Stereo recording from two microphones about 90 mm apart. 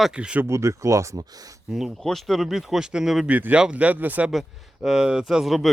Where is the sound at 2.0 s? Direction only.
5° left (ahead or behind).